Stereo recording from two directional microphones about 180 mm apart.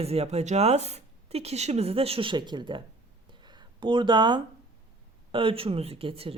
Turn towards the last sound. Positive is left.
turn(degrees=-30)  # may be behind; listen again after turning